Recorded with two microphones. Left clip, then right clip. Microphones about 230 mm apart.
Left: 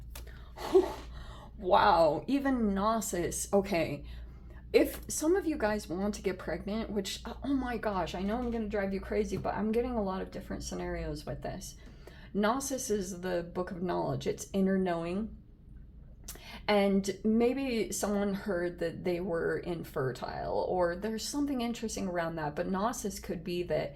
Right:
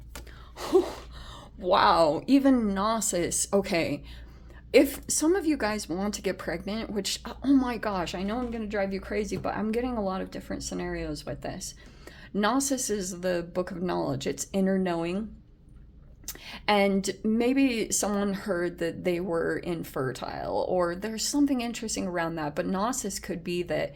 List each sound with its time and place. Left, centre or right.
0.6 s gasp: right
1.6 s speech: right
16.2 s speech: right